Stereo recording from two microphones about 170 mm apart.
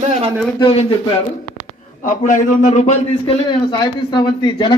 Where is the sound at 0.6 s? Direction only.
30° left (ahead or behind).